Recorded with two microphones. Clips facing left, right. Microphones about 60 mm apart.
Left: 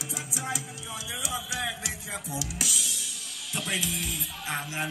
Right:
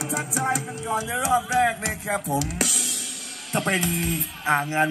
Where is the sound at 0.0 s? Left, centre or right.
Right.